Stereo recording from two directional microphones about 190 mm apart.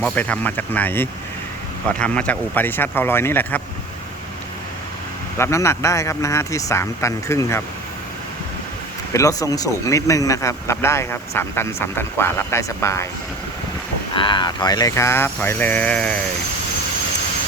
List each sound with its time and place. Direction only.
0.0 s speech: 5° left (ahead or behind)
5.4 s speech: 15° left (ahead or behind)
9.1 s speech: 15° left (ahead or behind)
14.2 s speech: 25° left (ahead or behind); by 16.2 s 5° left (ahead or behind)